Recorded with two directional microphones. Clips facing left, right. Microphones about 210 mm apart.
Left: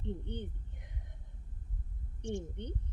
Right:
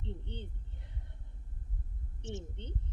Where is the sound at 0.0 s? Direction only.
15° left (ahead or behind).